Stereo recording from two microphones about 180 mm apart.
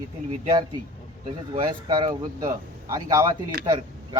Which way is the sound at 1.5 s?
25° right (ahead or behind).